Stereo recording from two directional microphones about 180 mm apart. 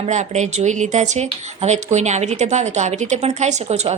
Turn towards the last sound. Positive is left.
turn(degrees=-40)  # may be behind; listen again after turning